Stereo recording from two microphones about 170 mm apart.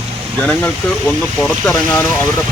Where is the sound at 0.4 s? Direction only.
10° left (ahead or behind).